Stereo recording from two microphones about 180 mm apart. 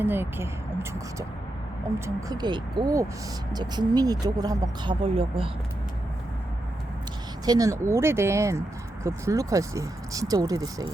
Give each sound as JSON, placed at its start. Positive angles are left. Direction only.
{"t": 0.0, "sound": "speech", "side_deg": -10}
{"t": 2.0, "sound": "speech", "side_deg": -25}
{"t": 7.4, "sound": "speech", "side_deg": -20}